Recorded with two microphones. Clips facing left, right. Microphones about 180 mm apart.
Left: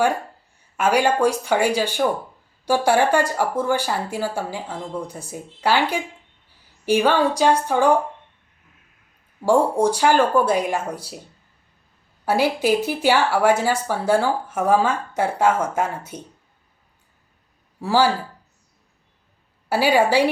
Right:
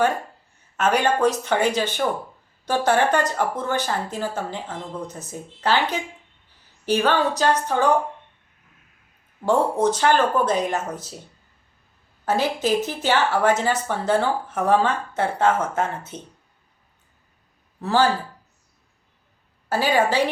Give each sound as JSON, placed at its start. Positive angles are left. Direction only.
{"t": 0.8, "sound": "speech", "side_deg": 10}
{"t": 9.4, "sound": "speech", "side_deg": 10}
{"t": 12.2, "sound": "speech", "side_deg": 10}
{"t": 17.7, "sound": "speech", "side_deg": 10}
{"t": 19.6, "sound": "speech", "side_deg": 10}